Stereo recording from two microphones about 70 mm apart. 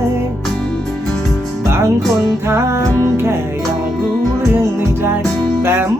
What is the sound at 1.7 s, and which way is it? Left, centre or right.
Music, right.